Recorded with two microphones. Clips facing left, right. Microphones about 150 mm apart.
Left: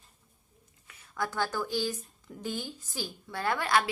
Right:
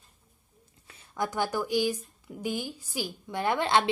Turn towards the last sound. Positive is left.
turn(degrees=-25)  # may be behind; listen again after turning